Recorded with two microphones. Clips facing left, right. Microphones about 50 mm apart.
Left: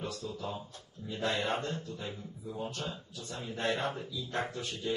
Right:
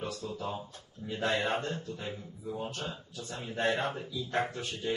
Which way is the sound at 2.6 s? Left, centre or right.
Right.